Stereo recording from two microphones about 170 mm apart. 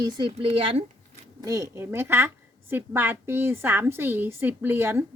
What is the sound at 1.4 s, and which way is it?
A woman's voice, 20° right (ahead or behind).